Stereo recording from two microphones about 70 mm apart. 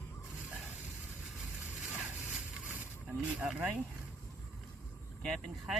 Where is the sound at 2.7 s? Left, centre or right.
Centre.